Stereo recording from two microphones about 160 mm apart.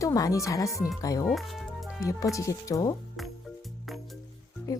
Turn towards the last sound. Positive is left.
turn(degrees=20)  # may be behind; listen again after turning